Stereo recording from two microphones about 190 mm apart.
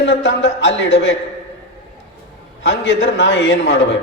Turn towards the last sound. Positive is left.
turn(degrees=70)  # may be behind; listen again after turning